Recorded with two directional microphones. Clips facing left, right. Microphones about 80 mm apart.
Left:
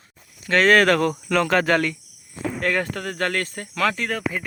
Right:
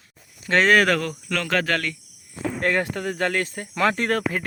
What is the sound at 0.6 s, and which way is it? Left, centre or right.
Speech, centre.